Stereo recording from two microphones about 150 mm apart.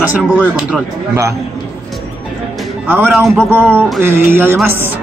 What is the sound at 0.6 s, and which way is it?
Speech, 5° right (ahead or behind).